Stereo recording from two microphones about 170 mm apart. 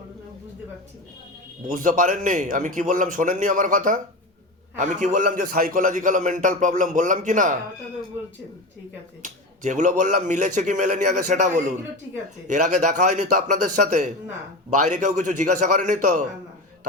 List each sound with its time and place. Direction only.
1.6 s a man's voice: 50° right (ahead or behind)
9.2 s a man's voice: 45° right (ahead or behind)